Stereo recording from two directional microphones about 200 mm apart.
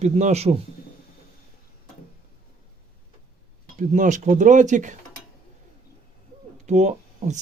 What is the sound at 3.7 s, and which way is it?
Speech, 40° right (ahead or behind).